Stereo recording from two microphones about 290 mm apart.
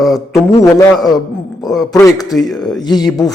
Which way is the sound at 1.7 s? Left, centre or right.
Centre.